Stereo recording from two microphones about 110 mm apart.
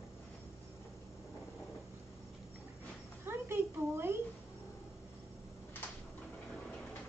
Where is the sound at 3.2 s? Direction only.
20° right (ahead or behind).